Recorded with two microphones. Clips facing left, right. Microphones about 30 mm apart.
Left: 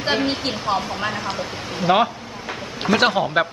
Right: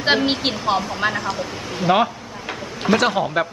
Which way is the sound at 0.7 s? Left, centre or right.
Centre.